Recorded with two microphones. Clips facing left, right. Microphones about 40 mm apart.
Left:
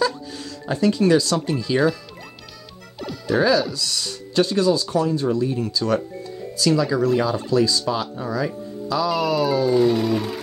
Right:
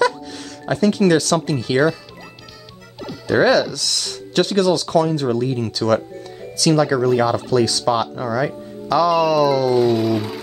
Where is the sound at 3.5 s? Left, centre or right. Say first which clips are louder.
Right 3 dB; right.